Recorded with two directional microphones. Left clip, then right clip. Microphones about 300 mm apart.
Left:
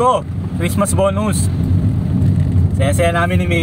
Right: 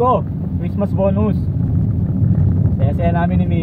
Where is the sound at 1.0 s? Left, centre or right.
Left.